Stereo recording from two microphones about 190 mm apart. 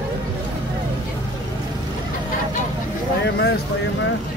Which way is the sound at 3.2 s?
65° left (ahead or behind).